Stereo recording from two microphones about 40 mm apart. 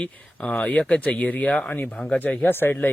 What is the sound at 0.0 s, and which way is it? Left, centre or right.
Speech, left.